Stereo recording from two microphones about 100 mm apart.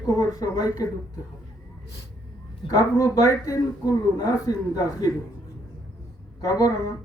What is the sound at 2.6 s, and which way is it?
Speech, 65° left (ahead or behind).